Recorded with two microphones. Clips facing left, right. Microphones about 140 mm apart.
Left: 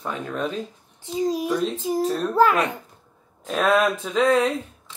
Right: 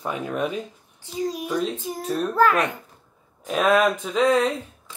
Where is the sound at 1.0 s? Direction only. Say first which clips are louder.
Left 4 dB; 20° left (ahead or behind).